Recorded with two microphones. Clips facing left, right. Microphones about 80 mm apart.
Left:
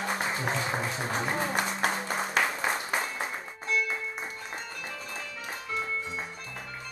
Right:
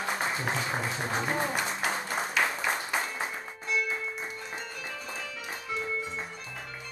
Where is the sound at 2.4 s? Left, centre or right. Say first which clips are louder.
Left 1 dB; left.